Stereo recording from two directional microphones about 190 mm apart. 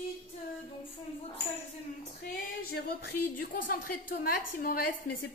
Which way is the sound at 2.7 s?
55° left (ahead or behind).